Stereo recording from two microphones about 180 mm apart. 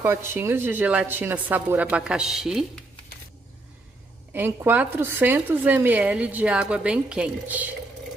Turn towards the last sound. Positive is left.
turn(degrees=-5)  # may be behind; listen again after turning